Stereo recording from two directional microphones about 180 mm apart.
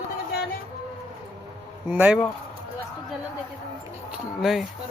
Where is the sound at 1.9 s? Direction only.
10° right (ahead or behind).